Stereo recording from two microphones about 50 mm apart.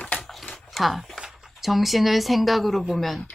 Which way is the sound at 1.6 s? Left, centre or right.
Centre.